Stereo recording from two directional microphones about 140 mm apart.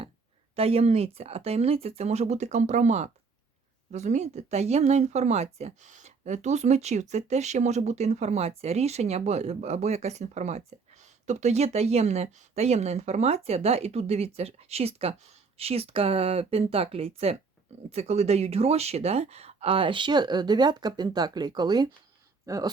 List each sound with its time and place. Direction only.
0.5 s speech: 45° right (ahead or behind); by 22.7 s 25° right (ahead or behind)